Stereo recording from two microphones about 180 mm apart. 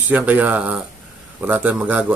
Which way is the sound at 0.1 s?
10° right (ahead or behind).